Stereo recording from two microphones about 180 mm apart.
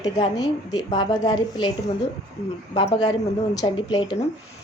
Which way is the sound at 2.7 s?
35° left (ahead or behind).